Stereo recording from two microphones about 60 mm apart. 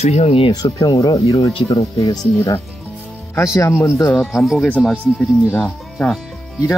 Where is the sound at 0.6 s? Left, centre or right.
Left.